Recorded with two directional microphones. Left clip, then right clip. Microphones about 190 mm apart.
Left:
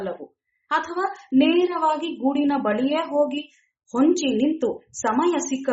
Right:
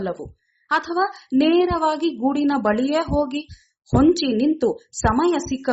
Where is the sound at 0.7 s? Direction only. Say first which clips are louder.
Right 3 dB; 40° right (ahead or behind).